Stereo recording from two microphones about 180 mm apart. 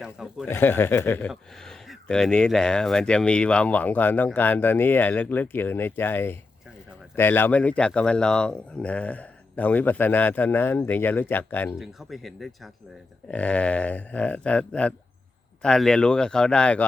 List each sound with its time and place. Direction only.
0.0 s speech: 5° right (ahead or behind)
0.4 s speech: 10° left (ahead or behind)
11.8 s speech: centre (ahead or behind)